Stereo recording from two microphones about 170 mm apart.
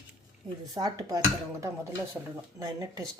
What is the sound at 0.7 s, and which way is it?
Speech, 20° right (ahead or behind).